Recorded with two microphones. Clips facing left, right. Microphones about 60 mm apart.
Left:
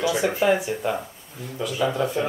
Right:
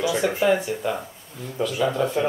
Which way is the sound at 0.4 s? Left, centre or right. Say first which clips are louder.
Even; centre.